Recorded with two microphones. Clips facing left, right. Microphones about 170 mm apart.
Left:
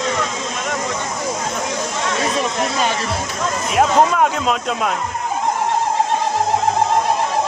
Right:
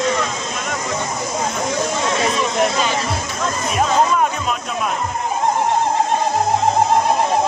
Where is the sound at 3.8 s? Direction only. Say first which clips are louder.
Left 2 dB; 70° left (ahead or behind).